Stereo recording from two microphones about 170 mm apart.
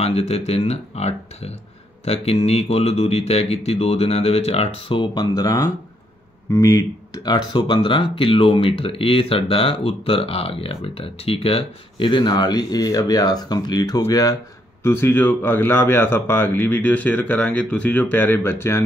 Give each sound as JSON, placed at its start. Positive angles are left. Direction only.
{"t": 0.0, "sound": "speech", "side_deg": 40}